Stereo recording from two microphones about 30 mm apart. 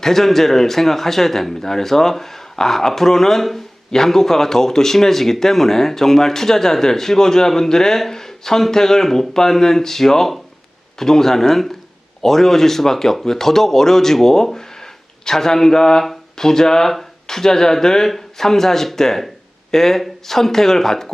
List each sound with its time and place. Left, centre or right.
0.0 s speech: centre